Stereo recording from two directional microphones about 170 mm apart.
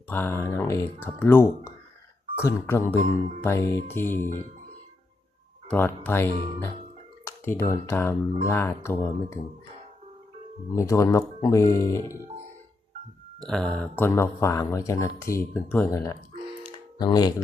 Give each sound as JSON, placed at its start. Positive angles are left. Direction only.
{"t": 0.1, "sound": "speech", "side_deg": 15}
{"t": 5.6, "sound": "speech", "side_deg": 10}
{"t": 10.8, "sound": "speech", "side_deg": 20}
{"t": 13.4, "sound": "speech", "side_deg": 5}